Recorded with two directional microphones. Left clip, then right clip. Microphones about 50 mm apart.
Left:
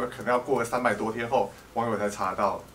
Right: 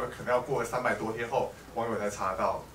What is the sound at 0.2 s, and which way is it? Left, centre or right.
Speech, left.